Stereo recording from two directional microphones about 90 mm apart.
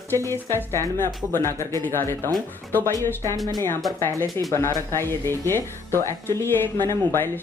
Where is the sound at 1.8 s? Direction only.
25° left (ahead or behind).